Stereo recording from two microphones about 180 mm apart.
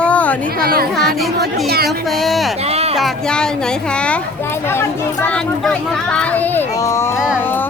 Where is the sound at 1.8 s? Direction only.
Centre (ahead or behind).